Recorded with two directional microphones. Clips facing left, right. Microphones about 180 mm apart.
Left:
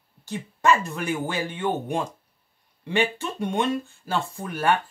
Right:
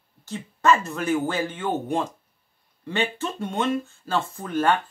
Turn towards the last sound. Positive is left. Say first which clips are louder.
# right 1 dB
turn(degrees=10)  # may be behind; listen again after turning